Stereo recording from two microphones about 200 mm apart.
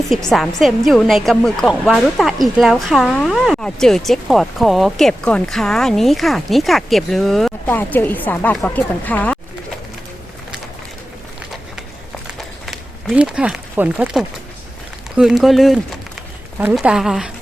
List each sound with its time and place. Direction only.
0.1 s a woman's voice: centre (ahead or behind)
12.4 s run: centre (ahead or behind)
15.1 s a woman's voice: 5° right (ahead or behind)